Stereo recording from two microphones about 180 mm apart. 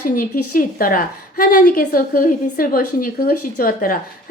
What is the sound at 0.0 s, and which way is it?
A woman's voice, 50° left (ahead or behind).